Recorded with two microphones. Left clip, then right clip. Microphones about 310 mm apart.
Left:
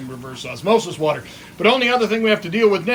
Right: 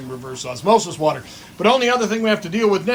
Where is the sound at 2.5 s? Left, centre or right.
Centre.